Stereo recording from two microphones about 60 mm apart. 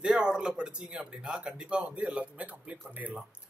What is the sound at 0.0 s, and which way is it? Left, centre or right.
Speech, centre.